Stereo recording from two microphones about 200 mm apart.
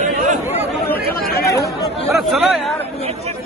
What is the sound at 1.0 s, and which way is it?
Chatter, 50° left (ahead or behind).